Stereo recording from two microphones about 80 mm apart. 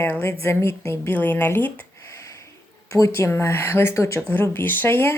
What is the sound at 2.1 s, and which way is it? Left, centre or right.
Speech, left.